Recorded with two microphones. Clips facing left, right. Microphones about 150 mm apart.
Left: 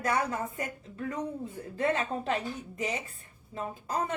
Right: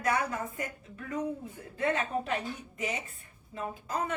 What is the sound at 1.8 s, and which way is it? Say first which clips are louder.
Speech: left 1 dB; 30° left (ahead or behind).